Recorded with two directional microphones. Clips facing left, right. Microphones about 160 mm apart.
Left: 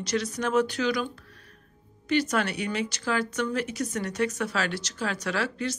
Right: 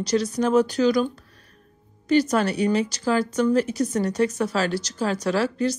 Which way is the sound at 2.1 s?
35° right (ahead or behind).